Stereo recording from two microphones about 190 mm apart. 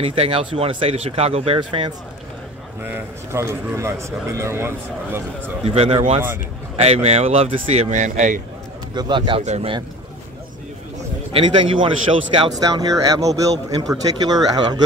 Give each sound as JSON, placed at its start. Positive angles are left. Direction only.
{"t": 0.0, "sound": "speech", "side_deg": -30}
{"t": 2.8, "sound": "a man's voice", "side_deg": -10}
{"t": 5.7, "sound": "speech", "side_deg": -30}
{"t": 8.9, "sound": "speech", "side_deg": -25}
{"t": 11.3, "sound": "speech", "side_deg": -25}